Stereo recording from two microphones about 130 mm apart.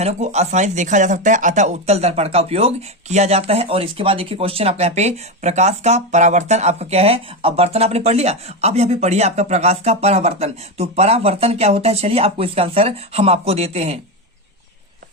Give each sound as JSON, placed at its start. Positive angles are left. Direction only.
{"t": 0.0, "sound": "speech", "side_deg": -60}